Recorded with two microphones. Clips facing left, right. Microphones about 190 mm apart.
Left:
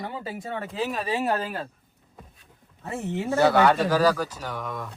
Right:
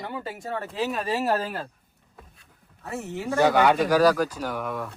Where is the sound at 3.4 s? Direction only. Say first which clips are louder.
Even; 10° right (ahead or behind).